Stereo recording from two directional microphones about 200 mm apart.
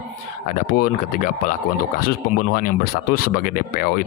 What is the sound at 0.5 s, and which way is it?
Speech, 45° left (ahead or behind).